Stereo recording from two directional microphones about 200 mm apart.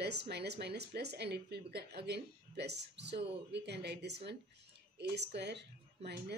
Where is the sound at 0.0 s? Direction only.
55° right (ahead or behind).